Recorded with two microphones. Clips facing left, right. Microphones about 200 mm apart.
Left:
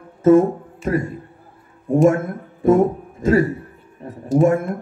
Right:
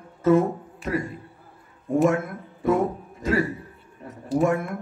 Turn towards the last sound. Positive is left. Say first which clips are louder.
# left 6 dB
turn(degrees=50)  # may be behind; listen again after turning